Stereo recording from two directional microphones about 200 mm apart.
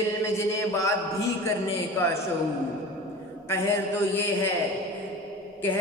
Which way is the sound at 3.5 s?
10° left (ahead or behind).